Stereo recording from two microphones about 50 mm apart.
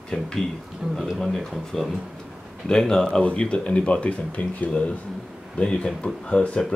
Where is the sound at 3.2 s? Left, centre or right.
Left.